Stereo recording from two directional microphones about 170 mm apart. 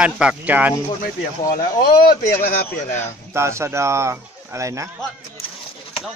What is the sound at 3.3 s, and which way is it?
Speech, 15° right (ahead or behind).